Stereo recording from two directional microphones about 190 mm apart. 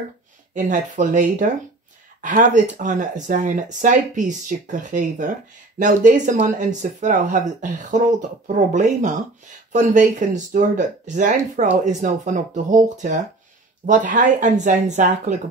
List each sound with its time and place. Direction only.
0.6 s speech: 40° right (ahead or behind)